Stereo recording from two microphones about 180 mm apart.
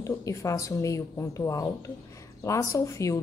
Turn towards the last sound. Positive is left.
turn(degrees=15)  # may be behind; listen again after turning